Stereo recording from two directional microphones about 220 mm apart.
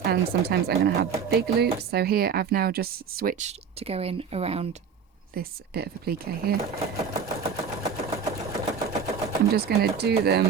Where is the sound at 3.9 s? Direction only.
25° right (ahead or behind).